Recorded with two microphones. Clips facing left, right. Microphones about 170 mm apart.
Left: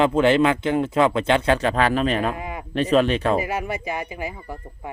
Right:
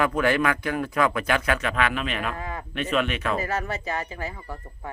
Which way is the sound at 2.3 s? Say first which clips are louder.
Left 2 dB; 15° left (ahead or behind).